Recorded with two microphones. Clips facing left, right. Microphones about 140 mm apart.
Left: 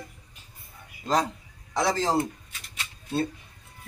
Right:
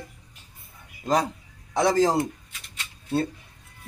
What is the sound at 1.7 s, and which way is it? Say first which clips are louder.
Speech: right 5 dB; 15° right (ahead or behind).